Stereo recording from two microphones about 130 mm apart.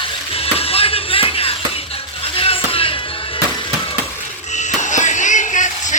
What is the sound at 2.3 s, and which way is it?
Music, 45° left (ahead or behind).